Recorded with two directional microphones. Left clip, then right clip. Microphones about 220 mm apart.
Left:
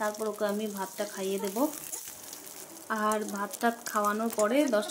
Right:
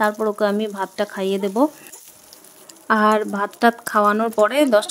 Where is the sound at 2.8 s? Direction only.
50° right (ahead or behind).